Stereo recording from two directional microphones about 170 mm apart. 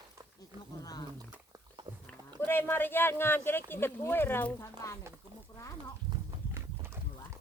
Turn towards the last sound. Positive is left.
turn(degrees=-15)  # may be behind; listen again after turning